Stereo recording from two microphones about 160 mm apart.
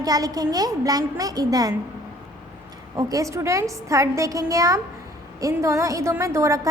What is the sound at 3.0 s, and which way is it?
A woman's voice, 20° right (ahead or behind).